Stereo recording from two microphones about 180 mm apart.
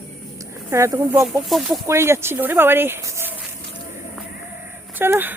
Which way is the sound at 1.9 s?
15° right (ahead or behind).